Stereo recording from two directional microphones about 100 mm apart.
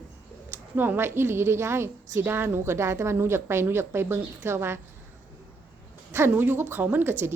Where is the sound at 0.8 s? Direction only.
20° right (ahead or behind).